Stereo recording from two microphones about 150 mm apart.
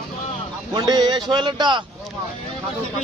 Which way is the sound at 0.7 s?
30° right (ahead or behind).